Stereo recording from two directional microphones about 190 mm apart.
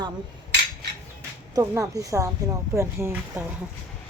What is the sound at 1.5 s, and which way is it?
Speech, 15° right (ahead or behind).